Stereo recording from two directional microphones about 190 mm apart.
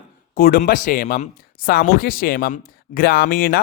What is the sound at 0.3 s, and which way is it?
Speech, 50° left (ahead or behind).